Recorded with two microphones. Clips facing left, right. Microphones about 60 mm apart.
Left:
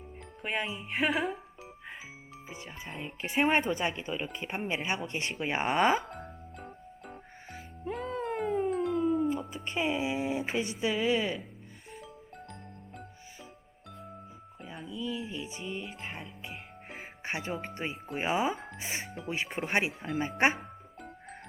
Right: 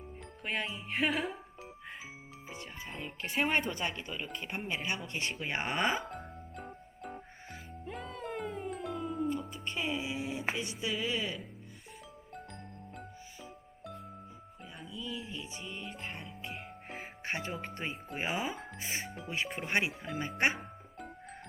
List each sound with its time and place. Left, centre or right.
0.4 s speech: centre
2.5 s speech: centre
3.4 s speech: centre
5.3 s speech: centre
6.1 s music: centre
7.5 s music: centre
8.2 s cat: centre
8.7 s music: centre
9.6 s speech: centre
14.6 s music: centre
17.2 s speech: centre
18.5 s music: centre
19.0 s speech: centre
19.3 s speech: left